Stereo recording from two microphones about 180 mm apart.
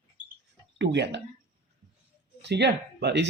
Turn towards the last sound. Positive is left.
turn(degrees=-70)  # may be behind; listen again after turning